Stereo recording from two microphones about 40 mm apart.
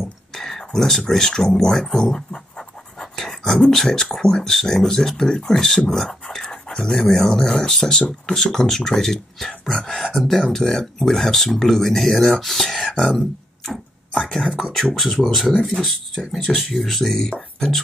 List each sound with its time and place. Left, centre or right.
0.3 s a sound: centre
0.7 s speech: centre
2.1 s scratch: centre
4.6 s speech: centre
13.7 s a sound: centre
14.6 s speech: centre
15.5 s speech: centre